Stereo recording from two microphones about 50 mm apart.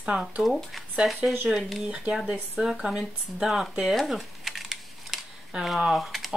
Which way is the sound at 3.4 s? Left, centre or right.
Centre.